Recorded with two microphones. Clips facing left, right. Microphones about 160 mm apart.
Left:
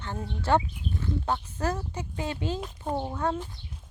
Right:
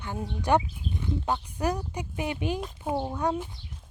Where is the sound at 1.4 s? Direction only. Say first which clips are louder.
Right 1 dB; 15° right (ahead or behind).